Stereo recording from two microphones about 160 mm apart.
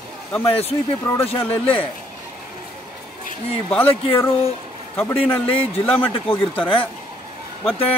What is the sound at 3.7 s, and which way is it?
Speech, 15° left (ahead or behind).